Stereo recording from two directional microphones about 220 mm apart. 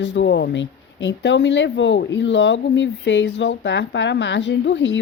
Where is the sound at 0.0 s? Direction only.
55° left (ahead or behind).